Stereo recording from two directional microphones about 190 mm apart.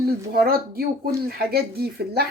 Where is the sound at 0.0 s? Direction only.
55° right (ahead or behind).